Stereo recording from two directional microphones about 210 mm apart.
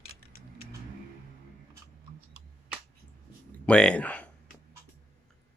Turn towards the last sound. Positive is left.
turn(degrees=5)  # may be behind; listen again after turning